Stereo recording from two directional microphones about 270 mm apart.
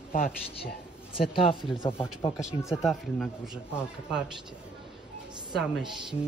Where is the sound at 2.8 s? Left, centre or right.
Centre.